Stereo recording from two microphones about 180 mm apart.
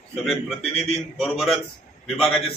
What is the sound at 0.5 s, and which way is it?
Speech, 35° left (ahead or behind).